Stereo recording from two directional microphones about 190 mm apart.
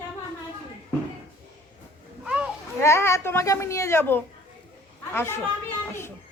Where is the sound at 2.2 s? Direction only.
5° right (ahead or behind).